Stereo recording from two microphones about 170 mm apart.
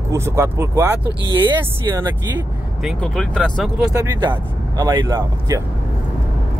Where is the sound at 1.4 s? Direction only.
25° right (ahead or behind).